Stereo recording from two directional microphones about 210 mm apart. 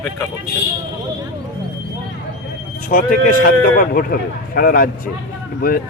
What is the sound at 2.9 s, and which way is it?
Speech, 40° left (ahead or behind).